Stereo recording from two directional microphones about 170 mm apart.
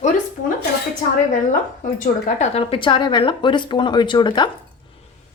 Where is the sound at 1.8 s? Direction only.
50° left (ahead or behind).